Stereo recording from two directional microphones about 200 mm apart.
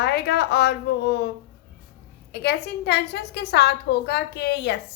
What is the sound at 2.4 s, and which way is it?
A woman's voice, 55° left (ahead or behind).